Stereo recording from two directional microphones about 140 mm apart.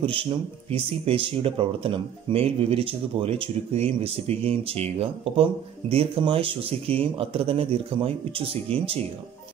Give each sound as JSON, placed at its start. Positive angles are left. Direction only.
{"t": 0.0, "sound": "speech", "side_deg": -40}